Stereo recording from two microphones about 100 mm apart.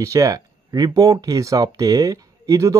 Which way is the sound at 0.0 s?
35° right (ahead or behind).